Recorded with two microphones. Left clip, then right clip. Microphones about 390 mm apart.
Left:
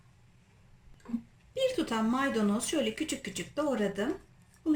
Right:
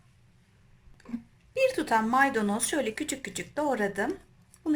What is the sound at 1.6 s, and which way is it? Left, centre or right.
A woman's voice, centre.